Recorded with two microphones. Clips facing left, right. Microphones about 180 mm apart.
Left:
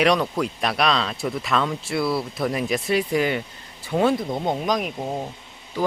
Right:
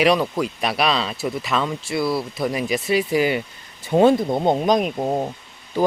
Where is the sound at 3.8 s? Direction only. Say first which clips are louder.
Right 5 dB; 25° right (ahead or behind).